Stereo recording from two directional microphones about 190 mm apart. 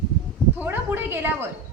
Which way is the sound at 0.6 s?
10° right (ahead or behind).